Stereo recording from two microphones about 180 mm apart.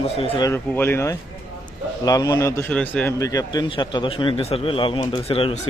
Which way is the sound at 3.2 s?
20° left (ahead or behind).